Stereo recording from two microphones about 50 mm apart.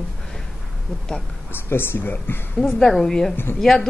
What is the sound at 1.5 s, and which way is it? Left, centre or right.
Speech, left.